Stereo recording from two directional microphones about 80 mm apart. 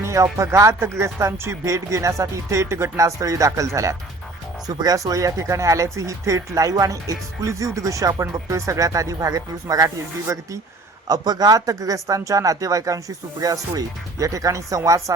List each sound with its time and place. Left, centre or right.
0.0 s speech: right
4.6 s speech: right
11.1 s speech: right